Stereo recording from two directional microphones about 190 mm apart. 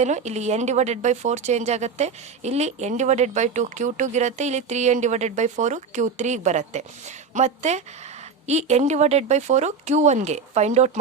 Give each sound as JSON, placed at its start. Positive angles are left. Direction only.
{"t": 0.0, "sound": "speech", "side_deg": -35}